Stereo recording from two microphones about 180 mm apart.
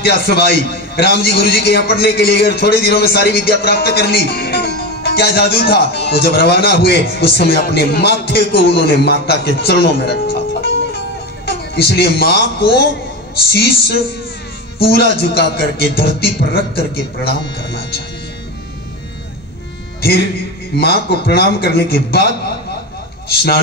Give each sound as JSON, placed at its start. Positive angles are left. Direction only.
{"t": 0.0, "sound": "a man's voice", "side_deg": 60}
{"t": 11.4, "sound": "a man's voice", "side_deg": 65}
{"t": 20.7, "sound": "a man's voice", "side_deg": 60}
{"t": 23.3, "sound": "a man's voice", "side_deg": 60}